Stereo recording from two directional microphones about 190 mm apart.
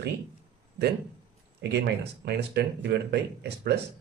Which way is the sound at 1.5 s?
60° right (ahead or behind).